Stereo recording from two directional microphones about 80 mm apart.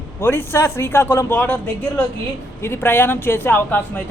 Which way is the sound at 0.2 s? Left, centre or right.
Left.